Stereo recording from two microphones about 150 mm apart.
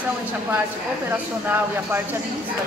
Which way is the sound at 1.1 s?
15° right (ahead or behind).